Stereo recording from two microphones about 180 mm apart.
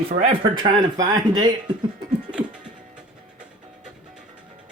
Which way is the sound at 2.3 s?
5° right (ahead or behind).